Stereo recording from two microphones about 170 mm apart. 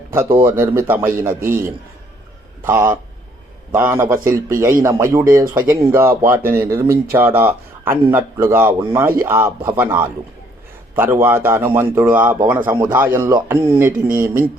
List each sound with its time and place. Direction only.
0.4 s speech: 15° right (ahead or behind)